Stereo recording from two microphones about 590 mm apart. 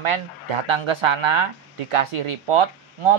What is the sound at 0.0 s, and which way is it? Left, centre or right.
Speech, right.